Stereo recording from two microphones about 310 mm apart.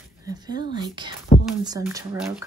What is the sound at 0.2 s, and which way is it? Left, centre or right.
Speech, centre.